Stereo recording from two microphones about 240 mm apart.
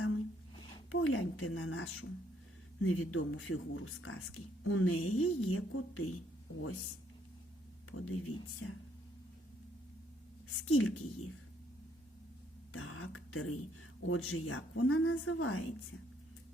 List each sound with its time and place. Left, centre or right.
0.9 s a sound: left
2.8 s speech: left
7.9 s speech: left
10.7 s a woman's voice: left
12.7 s speech: left